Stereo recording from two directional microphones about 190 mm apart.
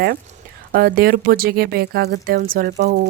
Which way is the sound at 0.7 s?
55° right (ahead or behind).